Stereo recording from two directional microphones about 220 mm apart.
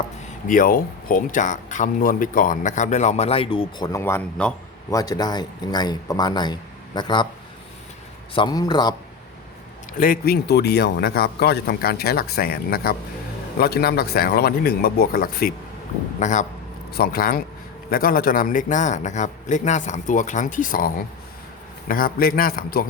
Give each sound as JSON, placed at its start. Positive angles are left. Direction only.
{"t": 0.4, "sound": "speech", "side_deg": 40}
{"t": 8.4, "sound": "speech", "side_deg": 20}
{"t": 10.0, "sound": "a man's voice", "side_deg": 45}
{"t": 16.9, "sound": "a man's voice", "side_deg": 45}